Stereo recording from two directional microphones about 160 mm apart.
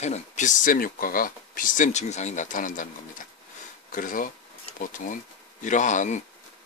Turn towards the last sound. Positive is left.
turn(degrees=50)  # may be behind; listen again after turning